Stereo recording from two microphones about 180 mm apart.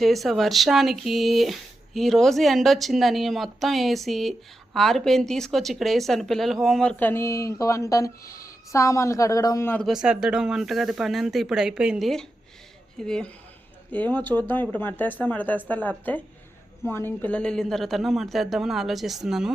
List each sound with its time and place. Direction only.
0.0 s speech: centre (ahead or behind)
9.8 s speech: 5° right (ahead or behind)